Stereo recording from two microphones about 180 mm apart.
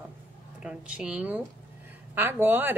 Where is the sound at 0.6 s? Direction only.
5° right (ahead or behind).